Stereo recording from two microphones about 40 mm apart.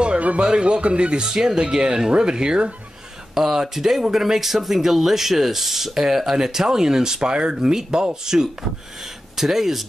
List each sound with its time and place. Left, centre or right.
0.4 s speech: right
3.3 s speech: centre